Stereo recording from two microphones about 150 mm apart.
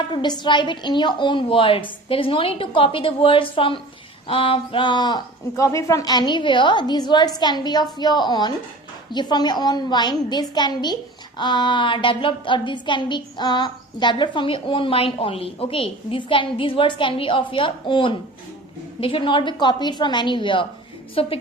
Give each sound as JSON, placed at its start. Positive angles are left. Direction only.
{"t": 0.1, "sound": "a woman's voice", "side_deg": 30}